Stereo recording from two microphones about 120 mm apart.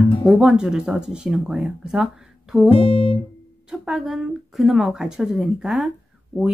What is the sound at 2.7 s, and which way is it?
Music, 50° left (ahead or behind).